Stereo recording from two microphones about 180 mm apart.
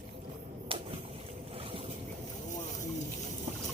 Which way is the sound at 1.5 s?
30° right (ahead or behind).